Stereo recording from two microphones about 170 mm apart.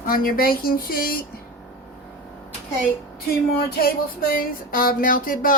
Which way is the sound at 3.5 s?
60° left (ahead or behind).